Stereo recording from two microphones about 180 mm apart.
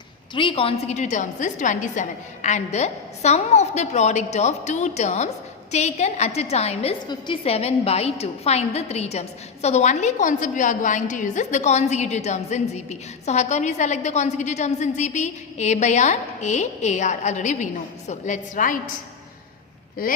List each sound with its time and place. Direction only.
0.3 s a woman's voice: 30° left (ahead or behind); by 18.8 s 45° left (ahead or behind)